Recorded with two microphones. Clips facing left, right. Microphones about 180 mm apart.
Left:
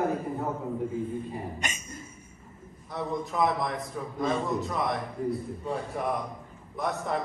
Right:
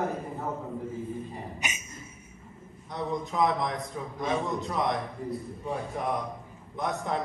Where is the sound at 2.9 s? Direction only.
Centre (ahead or behind).